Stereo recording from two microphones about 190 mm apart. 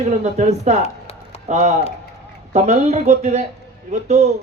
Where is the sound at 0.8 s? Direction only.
35° left (ahead or behind).